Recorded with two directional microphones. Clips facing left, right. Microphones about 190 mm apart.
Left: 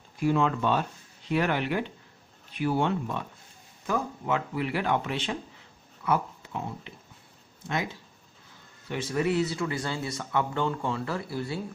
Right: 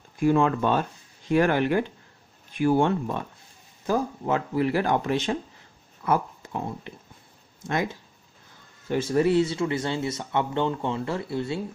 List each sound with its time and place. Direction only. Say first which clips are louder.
0.2 s speech: right 4 dB; 50° right (ahead or behind); by 11.6 s 25° right (ahead or behind)